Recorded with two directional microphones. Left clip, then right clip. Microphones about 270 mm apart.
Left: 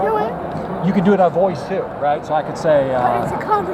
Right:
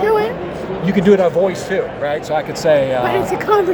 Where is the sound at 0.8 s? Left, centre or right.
Right.